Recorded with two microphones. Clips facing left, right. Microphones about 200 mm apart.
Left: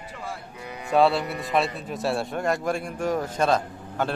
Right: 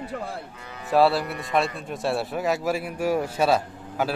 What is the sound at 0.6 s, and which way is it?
Cattle, 15° left (ahead or behind).